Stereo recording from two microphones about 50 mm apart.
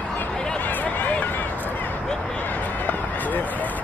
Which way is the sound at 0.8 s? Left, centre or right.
Left.